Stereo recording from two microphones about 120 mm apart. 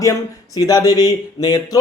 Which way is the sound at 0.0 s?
30° left (ahead or behind).